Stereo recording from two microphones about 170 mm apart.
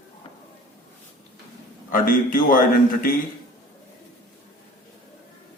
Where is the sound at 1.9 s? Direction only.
55° left (ahead or behind).